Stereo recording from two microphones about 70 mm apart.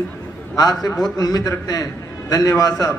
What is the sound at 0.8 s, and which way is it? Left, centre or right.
A man's voice, left.